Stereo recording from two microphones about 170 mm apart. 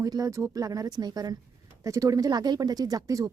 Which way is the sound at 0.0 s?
20° right (ahead or behind).